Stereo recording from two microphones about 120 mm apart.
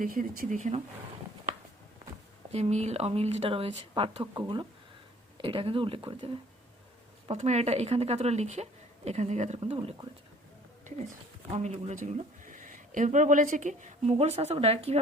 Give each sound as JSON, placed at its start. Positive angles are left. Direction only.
{"t": 0.2, "sound": "speech", "side_deg": -90}
{"t": 2.5, "sound": "speech", "side_deg": -65}
{"t": 7.3, "sound": "speech", "side_deg": -65}
{"t": 9.6, "sound": "speech", "side_deg": -50}
{"t": 11.5, "sound": "speech", "side_deg": -65}
{"t": 12.5, "sound": "speech", "side_deg": -90}